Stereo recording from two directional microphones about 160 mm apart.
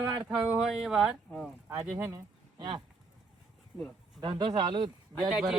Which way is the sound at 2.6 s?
30° right (ahead or behind).